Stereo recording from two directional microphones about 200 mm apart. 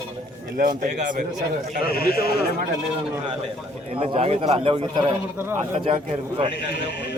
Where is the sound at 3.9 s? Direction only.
30° right (ahead or behind).